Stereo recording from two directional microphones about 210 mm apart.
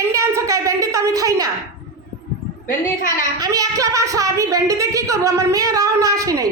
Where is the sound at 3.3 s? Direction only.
20° right (ahead or behind).